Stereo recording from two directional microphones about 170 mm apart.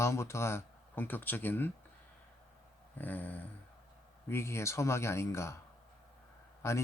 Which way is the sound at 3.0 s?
10° left (ahead or behind).